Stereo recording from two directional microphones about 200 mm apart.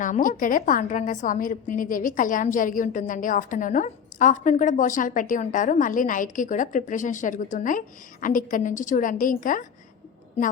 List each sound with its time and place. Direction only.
0.0 s a woman's voice: 40° left (ahead or behind)